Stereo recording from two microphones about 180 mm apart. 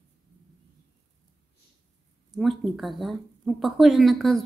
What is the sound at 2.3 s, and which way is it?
Speech, centre (ahead or behind).